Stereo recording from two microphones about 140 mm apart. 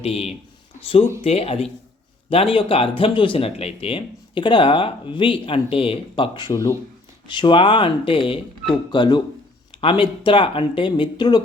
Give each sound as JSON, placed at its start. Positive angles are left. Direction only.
{"t": 0.0, "sound": "speech", "side_deg": 45}